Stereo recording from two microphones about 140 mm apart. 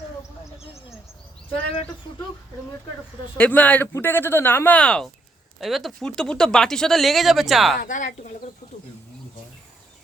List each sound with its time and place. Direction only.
3.3 s speech: 10° left (ahead or behind)
7.8 s a woman's voice: 65° left (ahead or behind)
8.6 s insect: 70° left (ahead or behind)